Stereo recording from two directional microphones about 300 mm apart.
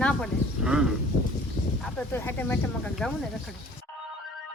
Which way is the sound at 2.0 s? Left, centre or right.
Centre.